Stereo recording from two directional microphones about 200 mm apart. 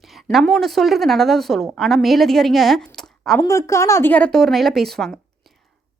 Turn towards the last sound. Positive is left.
turn(degrees=0)  # may be behind; listen again after turning